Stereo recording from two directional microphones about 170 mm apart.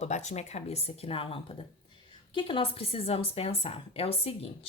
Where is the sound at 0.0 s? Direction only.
40° left (ahead or behind).